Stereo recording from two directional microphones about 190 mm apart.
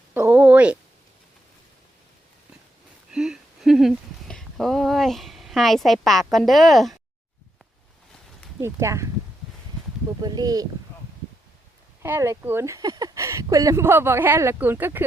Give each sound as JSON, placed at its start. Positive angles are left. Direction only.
{"t": 0.1, "sound": "speech", "side_deg": -10}
{"t": 3.1, "sound": "a sound", "side_deg": -5}
{"t": 8.6, "sound": "speech", "side_deg": -15}
{"t": 10.2, "sound": "speech", "side_deg": -20}
{"t": 12.0, "sound": "speech", "side_deg": -15}